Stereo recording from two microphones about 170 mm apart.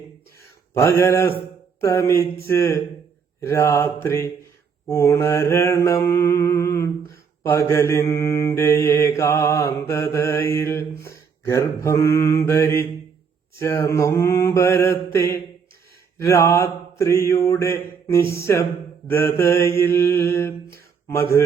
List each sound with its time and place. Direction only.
0.7 s mantra: 15° left (ahead or behind)